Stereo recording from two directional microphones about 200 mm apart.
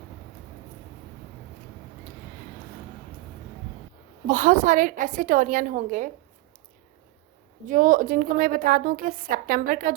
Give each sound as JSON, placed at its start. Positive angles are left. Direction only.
{"t": 4.3, "sound": "a woman's voice", "side_deg": -40}
{"t": 7.7, "sound": "a woman's voice", "side_deg": -40}